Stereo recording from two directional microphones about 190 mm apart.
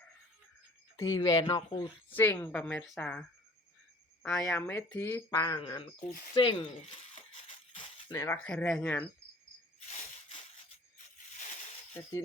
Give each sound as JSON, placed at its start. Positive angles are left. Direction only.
{"t": 0.9, "sound": "speech", "side_deg": 20}
{"t": 7.7, "sound": "a sound", "side_deg": 25}
{"t": 8.4, "sound": "speech", "side_deg": 5}